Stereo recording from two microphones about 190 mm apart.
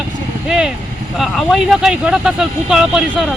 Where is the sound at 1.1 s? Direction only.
Centre (ahead or behind).